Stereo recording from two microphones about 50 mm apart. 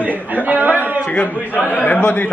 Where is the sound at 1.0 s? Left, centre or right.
Left.